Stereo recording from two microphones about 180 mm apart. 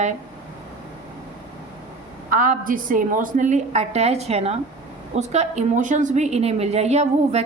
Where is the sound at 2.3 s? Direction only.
50° right (ahead or behind).